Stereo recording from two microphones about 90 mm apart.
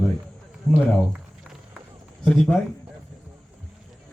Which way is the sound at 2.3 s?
10° left (ahead or behind).